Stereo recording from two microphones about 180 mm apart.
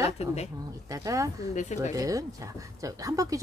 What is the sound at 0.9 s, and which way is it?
Speech, 20° right (ahead or behind).